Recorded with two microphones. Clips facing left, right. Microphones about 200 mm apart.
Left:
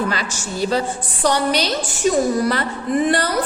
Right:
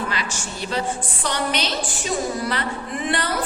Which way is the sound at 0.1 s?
40° left (ahead or behind).